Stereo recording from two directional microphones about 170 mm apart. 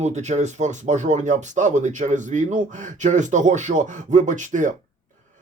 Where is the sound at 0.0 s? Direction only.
40° right (ahead or behind).